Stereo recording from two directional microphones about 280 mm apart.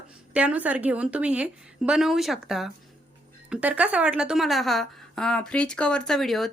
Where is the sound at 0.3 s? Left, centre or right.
Centre.